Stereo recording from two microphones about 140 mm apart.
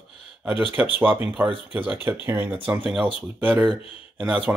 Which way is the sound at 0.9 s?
15° right (ahead or behind).